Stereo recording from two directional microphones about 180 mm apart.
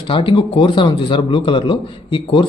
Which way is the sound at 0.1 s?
30° left (ahead or behind).